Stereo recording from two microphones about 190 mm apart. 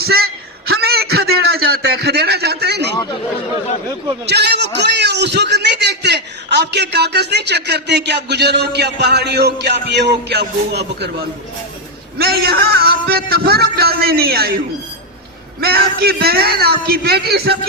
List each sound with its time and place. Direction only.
0.0 s a man's voice: 55° right (ahead or behind)
0.7 s a sound: 55° right (ahead or behind)
4.3 s a man's voice: 60° right (ahead or behind)
15.6 s a man's voice: 55° right (ahead or behind)